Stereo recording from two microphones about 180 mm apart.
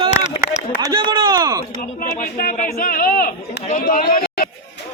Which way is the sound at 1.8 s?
50° left (ahead or behind).